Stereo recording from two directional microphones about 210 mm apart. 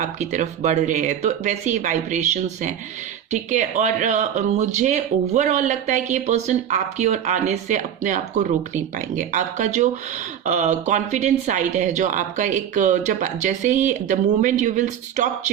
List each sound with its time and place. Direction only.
0.0 s speech: 35° right (ahead or behind)